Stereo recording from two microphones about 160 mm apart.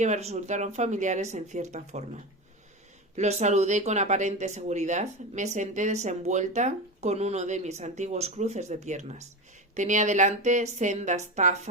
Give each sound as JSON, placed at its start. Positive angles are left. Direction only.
{"t": 0.0, "sound": "speech", "side_deg": -45}